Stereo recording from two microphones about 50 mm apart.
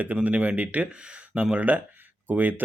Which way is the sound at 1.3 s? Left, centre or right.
Right.